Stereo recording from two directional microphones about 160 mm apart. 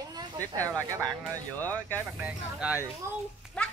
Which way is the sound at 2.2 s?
5° right (ahead or behind).